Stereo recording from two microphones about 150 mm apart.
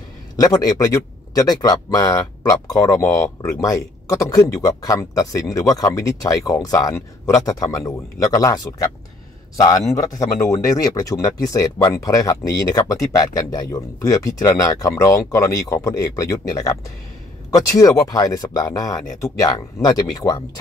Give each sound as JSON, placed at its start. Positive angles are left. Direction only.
{"t": 0.4, "sound": "a man's voice", "side_deg": 25}